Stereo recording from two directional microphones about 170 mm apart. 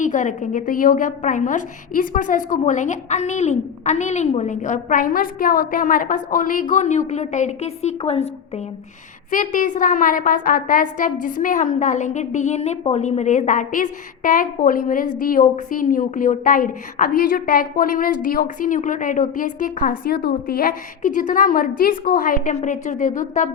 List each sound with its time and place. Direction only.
0.0 s a woman's voice: 45° left (ahead or behind)
9.3 s a woman's voice: 50° left (ahead or behind)